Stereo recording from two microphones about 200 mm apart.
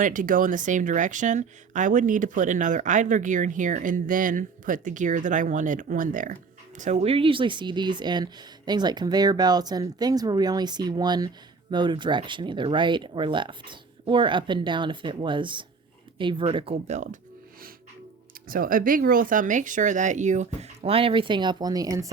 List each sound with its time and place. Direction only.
0.0 s speech: 40° right (ahead or behind)
18.4 s speech: 45° right (ahead or behind); by 22.1 s 15° right (ahead or behind)